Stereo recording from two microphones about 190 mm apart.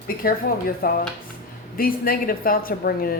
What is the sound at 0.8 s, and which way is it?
Speech, 50° left (ahead or behind).